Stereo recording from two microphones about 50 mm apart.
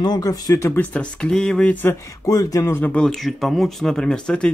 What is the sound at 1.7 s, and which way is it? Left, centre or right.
Speech, left.